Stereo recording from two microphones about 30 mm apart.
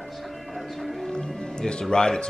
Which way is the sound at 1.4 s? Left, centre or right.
Left.